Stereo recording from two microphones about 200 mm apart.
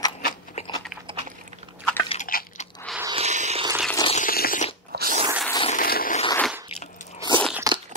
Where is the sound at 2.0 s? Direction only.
40° left (ahead or behind).